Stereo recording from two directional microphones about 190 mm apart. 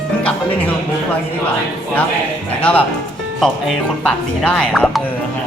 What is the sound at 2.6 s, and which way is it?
Speech, 5° left (ahead or behind).